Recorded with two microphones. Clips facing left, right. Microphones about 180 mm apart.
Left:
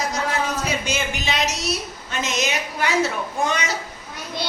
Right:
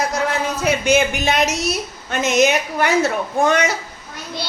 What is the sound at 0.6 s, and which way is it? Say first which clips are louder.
A woman's voice: right 9 dB; 55° right (ahead or behind).